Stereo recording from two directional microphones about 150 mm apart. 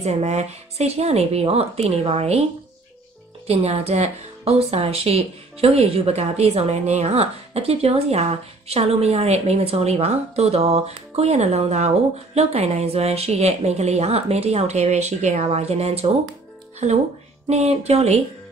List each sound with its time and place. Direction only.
0.0 s speech: 45° right (ahead or behind)
3.4 s speech: 45° right (ahead or behind)
17.5 s speech: 45° right (ahead or behind)